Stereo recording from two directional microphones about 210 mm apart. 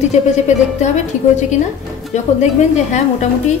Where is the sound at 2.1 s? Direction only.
35° left (ahead or behind).